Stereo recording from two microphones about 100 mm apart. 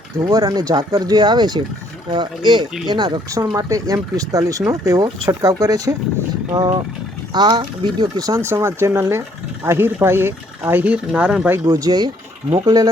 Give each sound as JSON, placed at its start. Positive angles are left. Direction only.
{"t": 0.2, "sound": "speech", "side_deg": -45}
{"t": 3.3, "sound": "speech", "side_deg": -35}
{"t": 8.4, "sound": "speech", "side_deg": -25}
{"t": 11.6, "sound": "speech", "side_deg": -40}